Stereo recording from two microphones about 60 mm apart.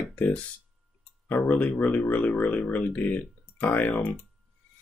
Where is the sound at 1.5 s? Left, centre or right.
Left.